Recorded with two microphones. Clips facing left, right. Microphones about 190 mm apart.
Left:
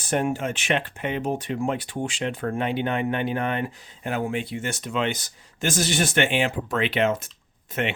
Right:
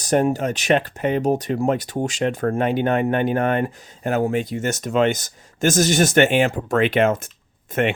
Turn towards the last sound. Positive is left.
turn(degrees=-50)  # may be behind; listen again after turning